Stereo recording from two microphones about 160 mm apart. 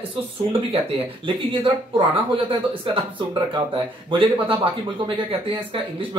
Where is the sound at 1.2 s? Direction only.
35° right (ahead or behind).